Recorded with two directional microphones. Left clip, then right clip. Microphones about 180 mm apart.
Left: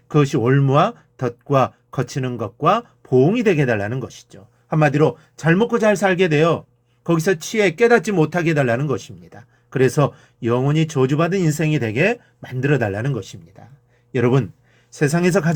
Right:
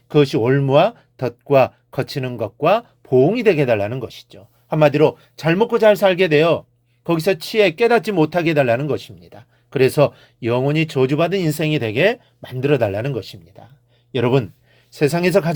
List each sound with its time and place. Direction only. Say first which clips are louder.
0.1 s speech: right 2 dB; 30° right (ahead or behind)